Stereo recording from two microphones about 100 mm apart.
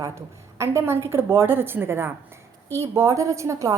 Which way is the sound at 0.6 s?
25° right (ahead or behind).